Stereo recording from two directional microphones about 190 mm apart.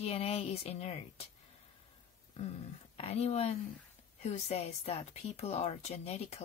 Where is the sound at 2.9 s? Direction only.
35° left (ahead or behind).